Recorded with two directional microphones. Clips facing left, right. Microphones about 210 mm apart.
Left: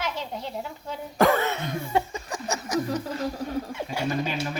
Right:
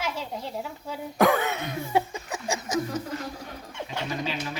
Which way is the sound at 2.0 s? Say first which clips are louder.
Right 1 dB; 10° right (ahead or behind).